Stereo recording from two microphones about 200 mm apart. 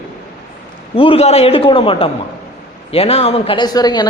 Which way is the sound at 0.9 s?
30° left (ahead or behind).